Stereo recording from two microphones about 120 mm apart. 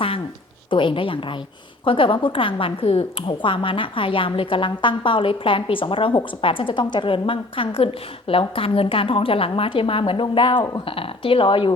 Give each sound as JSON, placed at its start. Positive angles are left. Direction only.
{"t": 0.7, "sound": "a woman's voice", "side_deg": 45}
{"t": 3.2, "sound": "a woman's voice", "side_deg": 45}